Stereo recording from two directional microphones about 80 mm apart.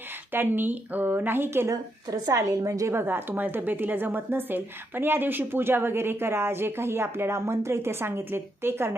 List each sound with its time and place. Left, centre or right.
0.3 s a woman's voice: right
1.7 s a woman's voice: right
2.3 s a woman's voice: right